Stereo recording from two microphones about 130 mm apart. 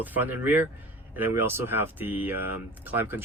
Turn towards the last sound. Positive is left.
turn(degrees=-15)  # may be behind; listen again after turning